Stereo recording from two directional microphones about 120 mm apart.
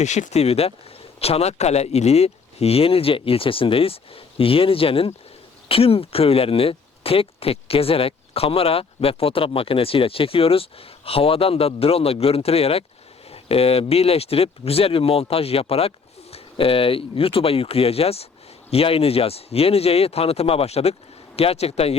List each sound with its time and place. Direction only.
0.0 s speech: 75° left (ahead or behind); by 21.9 s 60° left (ahead or behind)